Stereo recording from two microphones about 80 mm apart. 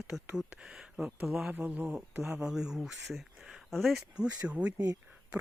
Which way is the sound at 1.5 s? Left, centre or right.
Right.